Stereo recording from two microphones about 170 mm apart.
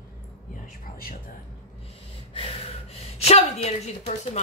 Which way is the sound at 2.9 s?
35° left (ahead or behind).